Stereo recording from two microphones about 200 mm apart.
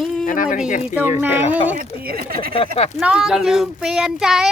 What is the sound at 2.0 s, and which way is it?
Speech, 50° right (ahead or behind).